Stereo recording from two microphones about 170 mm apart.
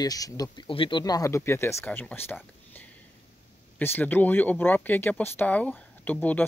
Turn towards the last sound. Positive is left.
turn(degrees=10)  # may be behind; listen again after turning